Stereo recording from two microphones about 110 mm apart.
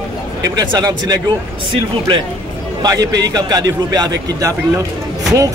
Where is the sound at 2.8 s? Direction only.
35° right (ahead or behind).